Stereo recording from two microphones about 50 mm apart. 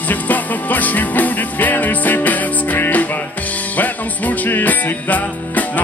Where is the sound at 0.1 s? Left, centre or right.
Left.